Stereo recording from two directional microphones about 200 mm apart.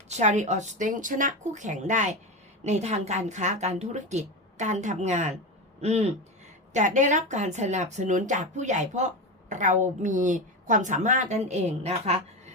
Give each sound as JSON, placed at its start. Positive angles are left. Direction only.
{"t": 0.1, "sound": "speech", "side_deg": -35}